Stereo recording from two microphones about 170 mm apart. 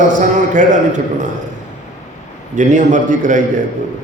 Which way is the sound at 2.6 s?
45° right (ahead or behind).